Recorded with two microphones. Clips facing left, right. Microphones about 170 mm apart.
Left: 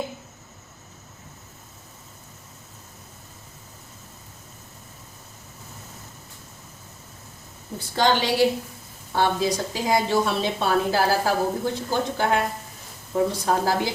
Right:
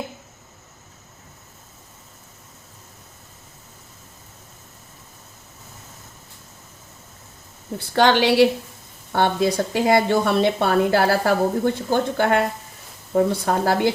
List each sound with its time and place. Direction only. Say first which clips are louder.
7.9 s a woman's voice: right 5 dB; 70° right (ahead or behind)